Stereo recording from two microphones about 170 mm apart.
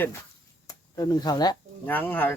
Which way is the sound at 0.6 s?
25° left (ahead or behind).